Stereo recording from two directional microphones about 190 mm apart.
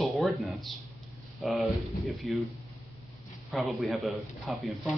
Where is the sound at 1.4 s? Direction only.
Centre (ahead or behind).